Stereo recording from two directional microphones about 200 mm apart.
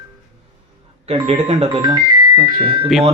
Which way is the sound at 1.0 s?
30° right (ahead or behind).